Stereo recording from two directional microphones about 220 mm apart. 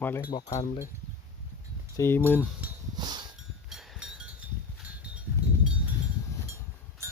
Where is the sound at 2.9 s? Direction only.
20° right (ahead or behind).